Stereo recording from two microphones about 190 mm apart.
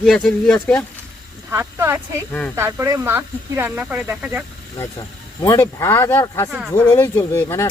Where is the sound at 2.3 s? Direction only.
5° left (ahead or behind).